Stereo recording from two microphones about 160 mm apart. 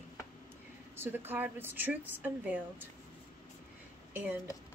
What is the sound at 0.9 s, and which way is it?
A woman's voice, 15° right (ahead or behind).